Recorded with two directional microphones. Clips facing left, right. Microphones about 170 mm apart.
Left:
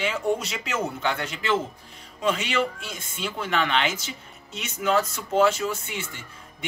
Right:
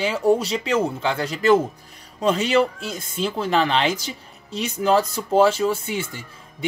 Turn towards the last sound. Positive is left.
turn(degrees=-35)  # may be behind; listen again after turning